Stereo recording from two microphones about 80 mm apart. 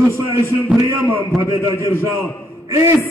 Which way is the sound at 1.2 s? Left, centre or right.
Right.